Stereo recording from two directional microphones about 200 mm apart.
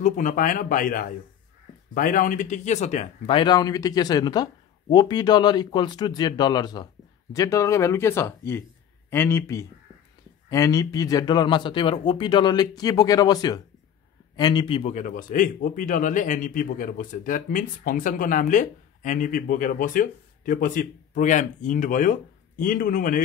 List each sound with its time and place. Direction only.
0.0 s speech: 40° left (ahead or behind); by 14.8 s 20° left (ahead or behind)
14.8 s speech: 35° left (ahead or behind)